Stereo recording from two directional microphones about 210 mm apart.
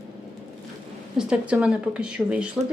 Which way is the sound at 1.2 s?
5° right (ahead or behind).